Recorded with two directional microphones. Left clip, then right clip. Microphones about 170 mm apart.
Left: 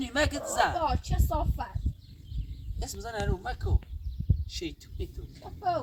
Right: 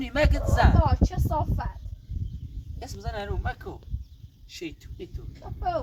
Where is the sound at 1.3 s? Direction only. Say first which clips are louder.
Right 1 dB; 15° left (ahead or behind).